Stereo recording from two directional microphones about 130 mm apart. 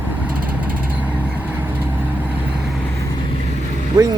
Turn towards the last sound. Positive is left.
turn(degrees=-30)  # may be behind; listen again after turning